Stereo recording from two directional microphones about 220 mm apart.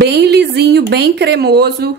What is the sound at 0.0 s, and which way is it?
A woman's voice, 50° right (ahead or behind).